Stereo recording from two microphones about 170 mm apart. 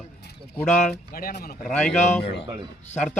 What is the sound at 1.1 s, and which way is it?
Speech, 60° left (ahead or behind).